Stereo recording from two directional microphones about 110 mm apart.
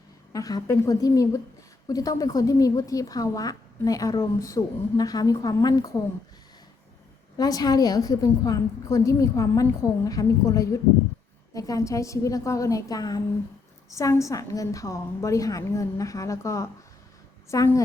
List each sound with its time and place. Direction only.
0.3 s a woman's voice: 35° left (ahead or behind)
7.3 s a woman's voice: 35° left (ahead or behind)